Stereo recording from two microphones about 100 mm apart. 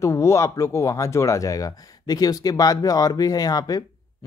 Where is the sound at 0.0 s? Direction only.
30° left (ahead or behind).